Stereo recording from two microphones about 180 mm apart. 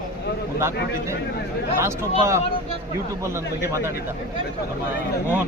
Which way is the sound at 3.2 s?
15° right (ahead or behind).